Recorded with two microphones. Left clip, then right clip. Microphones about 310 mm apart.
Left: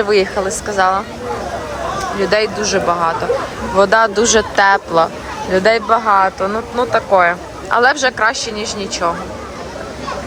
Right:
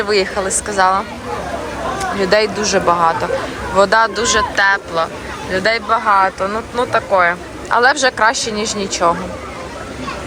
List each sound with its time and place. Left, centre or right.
0.0 s speech: centre
2.2 s speech: centre